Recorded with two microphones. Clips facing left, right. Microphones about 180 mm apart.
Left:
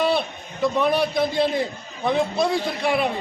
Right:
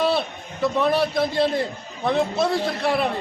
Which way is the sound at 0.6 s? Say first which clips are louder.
Even; centre (ahead or behind).